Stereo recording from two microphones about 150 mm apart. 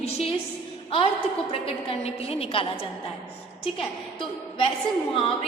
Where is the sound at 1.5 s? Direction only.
40° left (ahead or behind).